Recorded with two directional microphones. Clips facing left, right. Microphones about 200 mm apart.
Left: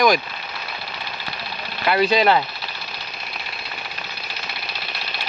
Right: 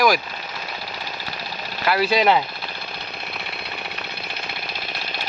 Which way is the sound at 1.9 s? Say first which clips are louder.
Left 1 dB; 10° right (ahead or behind).